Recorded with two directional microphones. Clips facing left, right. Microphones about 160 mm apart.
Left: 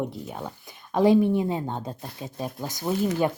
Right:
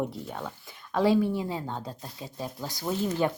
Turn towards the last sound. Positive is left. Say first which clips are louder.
# left 3 dB
turn(degrees=10)  # may be behind; listen again after turning